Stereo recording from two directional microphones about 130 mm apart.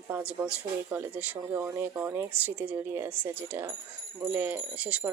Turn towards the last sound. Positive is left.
turn(degrees=-10)  # may be behind; listen again after turning